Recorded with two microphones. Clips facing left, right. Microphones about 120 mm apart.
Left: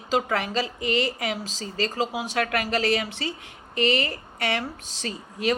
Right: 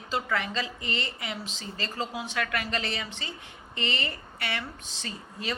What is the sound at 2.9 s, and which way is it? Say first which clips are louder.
Speech: left 10 dB; 75° left (ahead or behind).